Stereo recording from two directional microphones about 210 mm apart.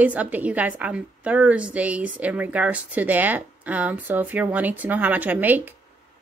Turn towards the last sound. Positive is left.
turn(degrees=-10)  # may be behind; listen again after turning